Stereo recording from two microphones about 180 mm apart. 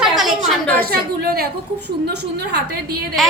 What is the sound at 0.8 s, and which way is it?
Speech, 55° right (ahead or behind).